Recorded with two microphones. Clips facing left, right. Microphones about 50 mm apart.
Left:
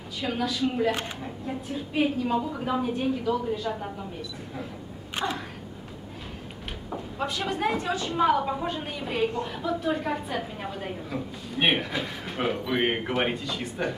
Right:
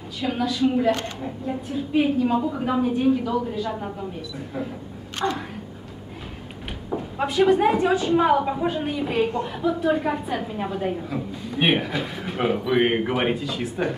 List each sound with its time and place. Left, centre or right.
0.2 s a woman's voice: centre
5.1 s a sound: centre
7.2 s a woman's voice: centre